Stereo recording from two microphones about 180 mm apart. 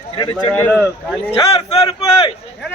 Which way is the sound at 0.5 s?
10° left (ahead or behind).